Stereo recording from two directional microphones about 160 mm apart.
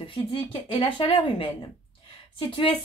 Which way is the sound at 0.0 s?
35° left (ahead or behind).